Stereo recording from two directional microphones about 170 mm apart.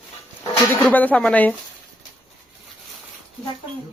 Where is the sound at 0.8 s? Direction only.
10° left (ahead or behind).